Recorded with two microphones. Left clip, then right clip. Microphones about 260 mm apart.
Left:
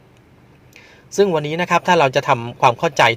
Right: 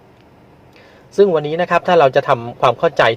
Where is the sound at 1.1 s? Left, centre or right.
Left.